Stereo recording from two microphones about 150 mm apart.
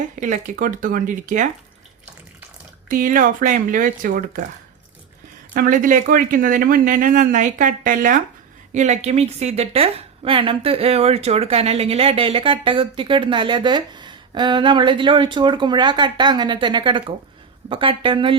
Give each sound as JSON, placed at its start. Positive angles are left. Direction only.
{"t": 0.2, "sound": "speech", "side_deg": -60}
{"t": 2.9, "sound": "speech", "side_deg": -65}
{"t": 5.5, "sound": "speech", "side_deg": -65}
{"t": 8.7, "sound": "a woman's voice", "side_deg": -50}